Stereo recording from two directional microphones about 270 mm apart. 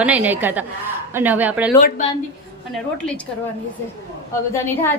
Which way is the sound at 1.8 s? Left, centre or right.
Left.